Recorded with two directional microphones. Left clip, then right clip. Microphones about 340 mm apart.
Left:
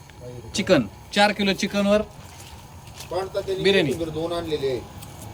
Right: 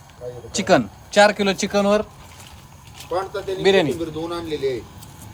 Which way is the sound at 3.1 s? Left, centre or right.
Centre.